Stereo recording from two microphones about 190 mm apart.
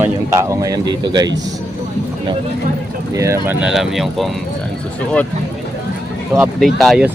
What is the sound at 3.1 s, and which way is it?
Speech, 15° right (ahead or behind).